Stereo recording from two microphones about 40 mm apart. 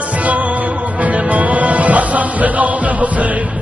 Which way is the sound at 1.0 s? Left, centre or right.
Right.